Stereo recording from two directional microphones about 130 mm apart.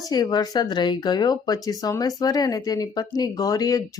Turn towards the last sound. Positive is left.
turn(degrees=30)  # may be behind; listen again after turning